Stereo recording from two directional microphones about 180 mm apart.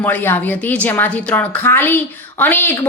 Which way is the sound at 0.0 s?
10° left (ahead or behind).